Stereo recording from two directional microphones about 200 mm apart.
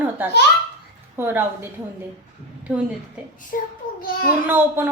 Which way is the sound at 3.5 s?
45° left (ahead or behind).